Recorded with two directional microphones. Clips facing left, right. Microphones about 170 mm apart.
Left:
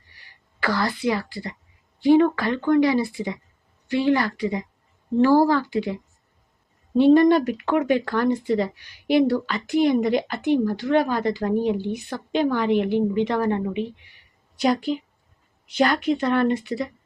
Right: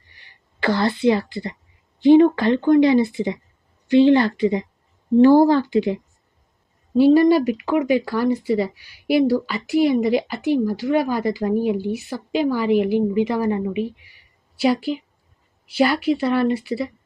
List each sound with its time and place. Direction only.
0.6 s a woman's voice: 25° right (ahead or behind)
6.9 s speech: 5° right (ahead or behind)